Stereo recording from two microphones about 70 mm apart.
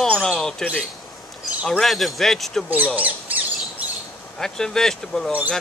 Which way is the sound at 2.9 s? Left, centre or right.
Right.